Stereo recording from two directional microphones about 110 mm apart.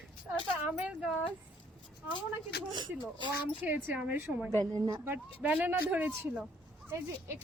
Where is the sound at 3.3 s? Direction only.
15° right (ahead or behind).